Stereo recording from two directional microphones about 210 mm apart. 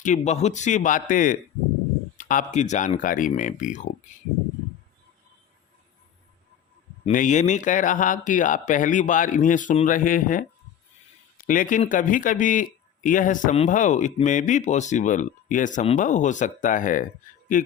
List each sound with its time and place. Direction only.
0.0 s a man's voice: 35° left (ahead or behind)
7.0 s a man's voice: 35° left (ahead or behind)
11.4 s a man's voice: 40° left (ahead or behind)